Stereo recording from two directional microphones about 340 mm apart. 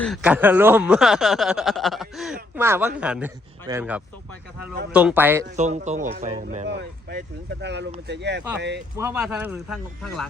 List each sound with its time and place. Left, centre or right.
0.0 s speech: centre
5.5 s speech: centre
9.0 s speech: centre